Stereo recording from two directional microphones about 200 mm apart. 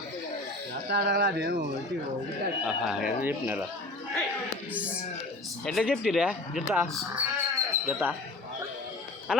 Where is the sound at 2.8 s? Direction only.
5° right (ahead or behind).